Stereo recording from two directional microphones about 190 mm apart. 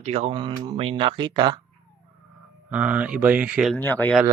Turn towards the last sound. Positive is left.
turn(degrees=10)  # may be behind; listen again after turning